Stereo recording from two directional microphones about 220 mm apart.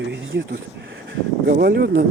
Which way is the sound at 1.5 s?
45° right (ahead or behind).